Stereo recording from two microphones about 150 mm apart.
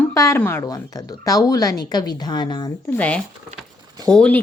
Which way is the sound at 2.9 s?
10° left (ahead or behind).